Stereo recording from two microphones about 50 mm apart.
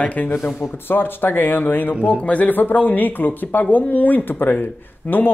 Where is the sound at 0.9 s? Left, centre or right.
Left.